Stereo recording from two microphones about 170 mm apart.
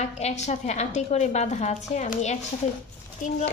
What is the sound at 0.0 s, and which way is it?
A woman's voice, 40° left (ahead or behind).